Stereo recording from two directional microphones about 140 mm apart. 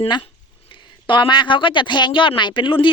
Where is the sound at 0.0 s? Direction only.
35° left (ahead or behind).